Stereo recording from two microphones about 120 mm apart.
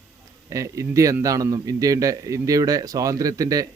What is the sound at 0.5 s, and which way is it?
A man's voice, 25° right (ahead or behind).